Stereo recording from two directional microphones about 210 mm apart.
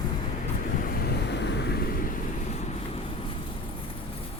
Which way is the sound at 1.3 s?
55° left (ahead or behind).